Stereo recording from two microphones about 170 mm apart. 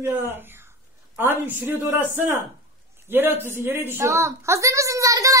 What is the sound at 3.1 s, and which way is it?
A man's voice, 10° right (ahead or behind).